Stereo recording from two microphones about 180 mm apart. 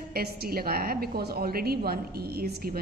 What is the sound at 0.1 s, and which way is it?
A woman's voice, 60° right (ahead or behind).